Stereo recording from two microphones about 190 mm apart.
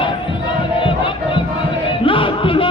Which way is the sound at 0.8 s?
25° left (ahead or behind).